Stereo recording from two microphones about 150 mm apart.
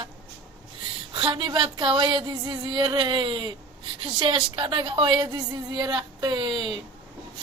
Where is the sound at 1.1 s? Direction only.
35° right (ahead or behind).